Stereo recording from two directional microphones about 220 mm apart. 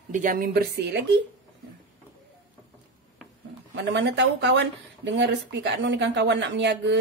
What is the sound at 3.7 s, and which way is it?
Speech, 55° right (ahead or behind).